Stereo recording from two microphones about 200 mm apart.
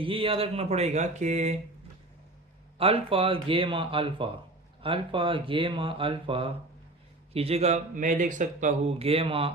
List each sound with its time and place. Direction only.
0.0 s speech: 25° right (ahead or behind)
2.7 s speech: 30° right (ahead or behind)